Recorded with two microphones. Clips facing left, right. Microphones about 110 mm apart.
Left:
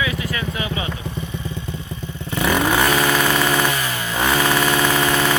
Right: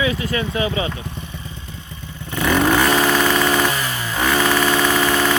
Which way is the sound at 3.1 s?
5° left (ahead or behind).